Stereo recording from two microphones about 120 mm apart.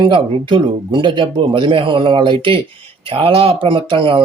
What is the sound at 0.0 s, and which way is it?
Speech, 45° right (ahead or behind).